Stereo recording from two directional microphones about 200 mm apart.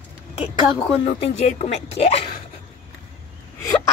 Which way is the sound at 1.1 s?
30° left (ahead or behind).